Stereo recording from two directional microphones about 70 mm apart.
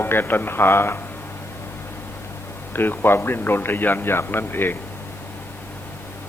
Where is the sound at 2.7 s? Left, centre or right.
Left.